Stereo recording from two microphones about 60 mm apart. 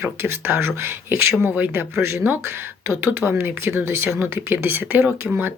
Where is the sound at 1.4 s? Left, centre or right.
Right.